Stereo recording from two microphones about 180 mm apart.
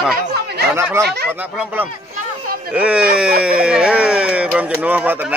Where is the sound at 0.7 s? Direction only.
15° right (ahead or behind).